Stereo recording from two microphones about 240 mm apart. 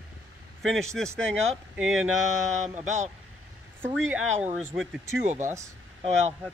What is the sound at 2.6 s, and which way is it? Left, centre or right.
Speech, right.